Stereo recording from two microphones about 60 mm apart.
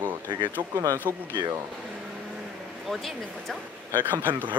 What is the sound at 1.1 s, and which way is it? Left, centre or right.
Speech, right.